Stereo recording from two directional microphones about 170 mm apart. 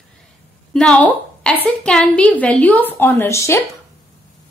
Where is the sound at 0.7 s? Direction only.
5° left (ahead or behind).